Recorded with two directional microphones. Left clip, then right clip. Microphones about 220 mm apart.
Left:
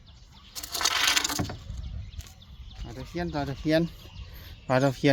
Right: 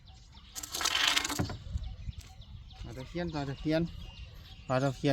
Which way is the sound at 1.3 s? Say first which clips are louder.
Left 4 dB; 40° left (ahead or behind).